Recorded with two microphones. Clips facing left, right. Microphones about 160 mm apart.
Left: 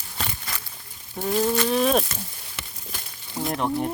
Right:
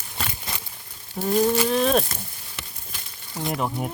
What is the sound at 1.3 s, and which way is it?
Speech, 10° right (ahead or behind).